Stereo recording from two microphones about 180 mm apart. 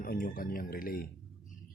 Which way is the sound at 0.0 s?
50° left (ahead or behind).